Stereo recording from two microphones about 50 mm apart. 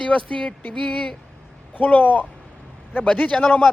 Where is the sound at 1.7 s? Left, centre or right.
Left.